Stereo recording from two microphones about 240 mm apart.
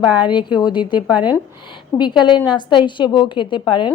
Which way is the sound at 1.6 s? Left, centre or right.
Centre.